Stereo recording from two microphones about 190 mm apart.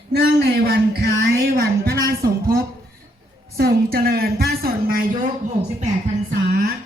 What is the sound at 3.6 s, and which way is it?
Speech, 50° right (ahead or behind).